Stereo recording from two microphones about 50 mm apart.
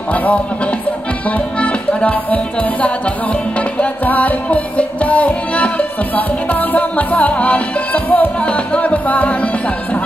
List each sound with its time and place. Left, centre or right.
0.1 s speech: left
1.6 s music: left